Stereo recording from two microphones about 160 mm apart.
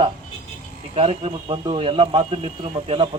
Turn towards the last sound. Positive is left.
turn(degrees=-35)  # may be behind; listen again after turning